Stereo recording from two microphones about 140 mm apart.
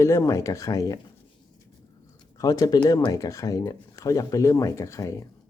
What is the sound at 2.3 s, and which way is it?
Speech, 25° left (ahead or behind).